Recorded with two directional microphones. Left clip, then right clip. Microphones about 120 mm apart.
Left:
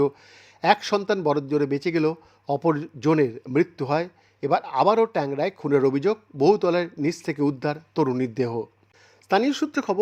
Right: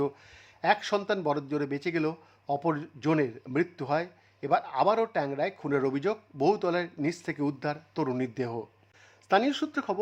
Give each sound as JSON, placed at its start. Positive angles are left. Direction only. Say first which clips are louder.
{"t": 0.0, "sound": "speech", "louder": "left 8 dB", "side_deg": 30}